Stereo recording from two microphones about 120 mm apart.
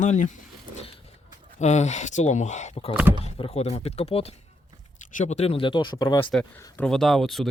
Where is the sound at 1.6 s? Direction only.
70° left (ahead or behind).